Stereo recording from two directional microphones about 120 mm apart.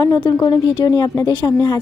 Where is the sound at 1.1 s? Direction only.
20° left (ahead or behind).